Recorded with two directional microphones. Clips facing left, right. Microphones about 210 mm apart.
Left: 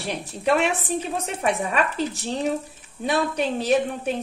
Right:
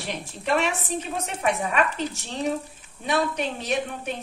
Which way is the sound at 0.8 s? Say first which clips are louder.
Left 3 dB; 35° left (ahead or behind).